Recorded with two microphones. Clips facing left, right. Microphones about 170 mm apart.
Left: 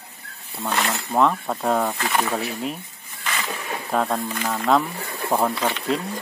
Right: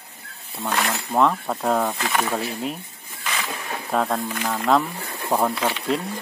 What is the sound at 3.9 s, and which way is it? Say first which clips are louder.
Speech: even; centre (ahead or behind).